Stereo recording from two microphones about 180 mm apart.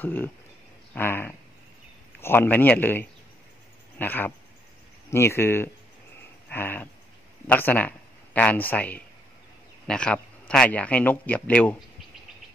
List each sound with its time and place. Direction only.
0.0 s speech: 10° left (ahead or behind)